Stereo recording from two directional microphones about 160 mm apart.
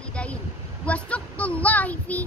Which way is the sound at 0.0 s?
5° left (ahead or behind).